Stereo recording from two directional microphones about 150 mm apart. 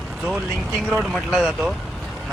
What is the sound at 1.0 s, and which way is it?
Speech, 5° right (ahead or behind).